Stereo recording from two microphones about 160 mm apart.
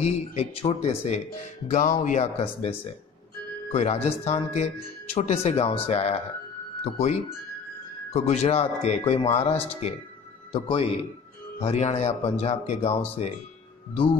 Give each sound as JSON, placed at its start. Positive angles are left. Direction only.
{"t": 0.0, "sound": "speech", "side_deg": 40}
{"t": 3.7, "sound": "speech", "side_deg": 45}